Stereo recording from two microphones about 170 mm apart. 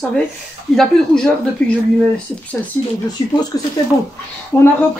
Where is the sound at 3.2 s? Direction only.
25° left (ahead or behind).